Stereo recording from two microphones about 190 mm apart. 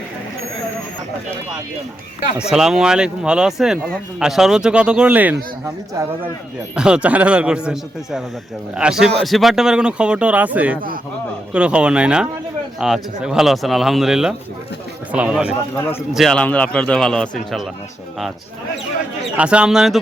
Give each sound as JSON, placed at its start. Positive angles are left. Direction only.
{"t": 2.5, "sound": "speech", "side_deg": -5}
{"t": 6.7, "sound": "speech", "side_deg": -5}
{"t": 19.4, "sound": "speech", "side_deg": -5}